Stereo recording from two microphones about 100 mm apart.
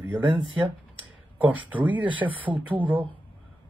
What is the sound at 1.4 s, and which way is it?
Speech, 15° right (ahead or behind).